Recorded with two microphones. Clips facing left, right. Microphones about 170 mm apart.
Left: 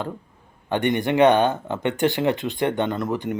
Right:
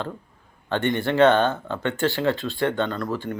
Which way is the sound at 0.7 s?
15° left (ahead or behind).